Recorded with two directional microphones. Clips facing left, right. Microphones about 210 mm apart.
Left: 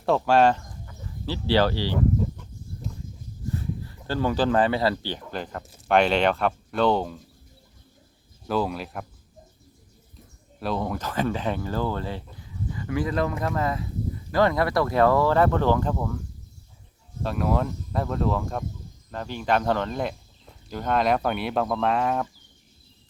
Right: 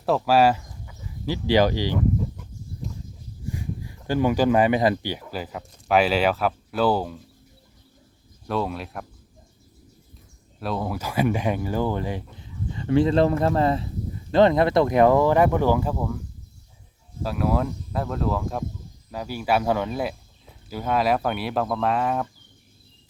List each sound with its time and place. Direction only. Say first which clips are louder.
0.0 s speech: right 1 dB; 5° right (ahead or behind)
3.5 s speech: left 1 dB; 15° right (ahead or behind)
8.4 s speech: left 1 dB; centre (ahead or behind)
10.6 s speech: even; centre (ahead or behind)
17.2 s speech: right 1 dB; centre (ahead or behind)